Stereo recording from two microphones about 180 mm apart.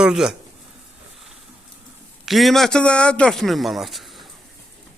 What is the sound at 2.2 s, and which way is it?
A man's voice, centre (ahead or behind).